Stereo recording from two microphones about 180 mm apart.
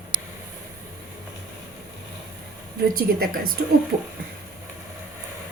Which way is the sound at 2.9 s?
55° right (ahead or behind).